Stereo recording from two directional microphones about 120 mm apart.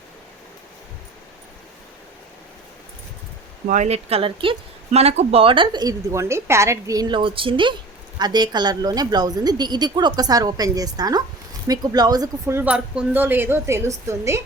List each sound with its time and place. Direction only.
3.7 s speech: 75° right (ahead or behind); by 4.5 s 50° right (ahead or behind)
4.9 s a woman's voice: 65° right (ahead or behind); by 7.2 s 30° right (ahead or behind)
7.2 s a woman's voice: 45° right (ahead or behind)
12.5 s speech: 10° right (ahead or behind)